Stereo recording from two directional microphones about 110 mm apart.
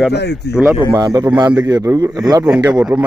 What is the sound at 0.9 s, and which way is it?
A man's voice, 35° right (ahead or behind).